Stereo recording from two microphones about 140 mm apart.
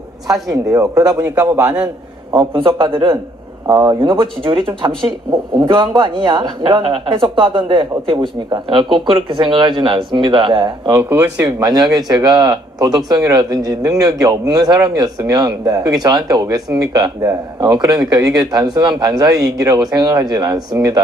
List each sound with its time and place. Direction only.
0.7 s a man's voice: 25° right (ahead or behind)
2.3 s speech: 35° right (ahead or behind)
10.9 s speech: 15° right (ahead or behind)
11.4 s a man's voice: 25° right (ahead or behind)